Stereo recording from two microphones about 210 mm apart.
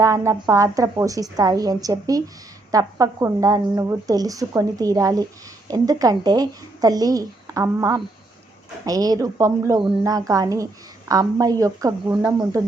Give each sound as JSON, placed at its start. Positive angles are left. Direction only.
{"t": 0.0, "sound": "speech", "side_deg": -15}